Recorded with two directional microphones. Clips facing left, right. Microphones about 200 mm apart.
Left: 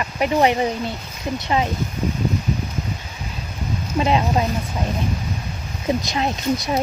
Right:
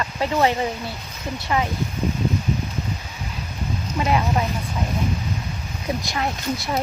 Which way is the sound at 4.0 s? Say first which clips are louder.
Left 3 dB; 25° left (ahead or behind).